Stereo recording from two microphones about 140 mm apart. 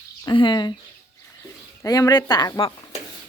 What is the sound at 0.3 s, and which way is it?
Speech, 35° left (ahead or behind).